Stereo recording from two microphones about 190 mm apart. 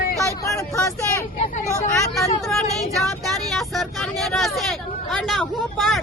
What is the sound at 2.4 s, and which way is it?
Speech, centre (ahead or behind).